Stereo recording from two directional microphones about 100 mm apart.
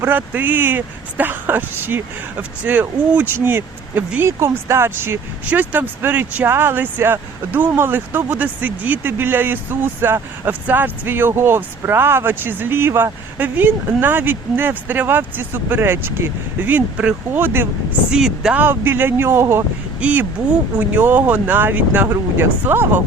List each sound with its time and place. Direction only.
0.0 s speech: 20° right (ahead or behind)
18.1 s speech: 5° right (ahead or behind)
18.5 s speech: 20° right (ahead or behind)
20.0 s speech: 15° right (ahead or behind)